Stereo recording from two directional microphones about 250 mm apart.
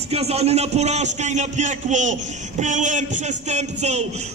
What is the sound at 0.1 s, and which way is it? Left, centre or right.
A man's voice, right.